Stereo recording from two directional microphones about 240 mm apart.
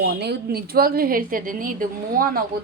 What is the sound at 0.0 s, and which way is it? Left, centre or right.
A woman's voice, right.